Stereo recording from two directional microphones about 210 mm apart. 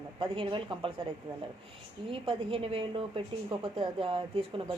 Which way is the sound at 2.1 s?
25° right (ahead or behind).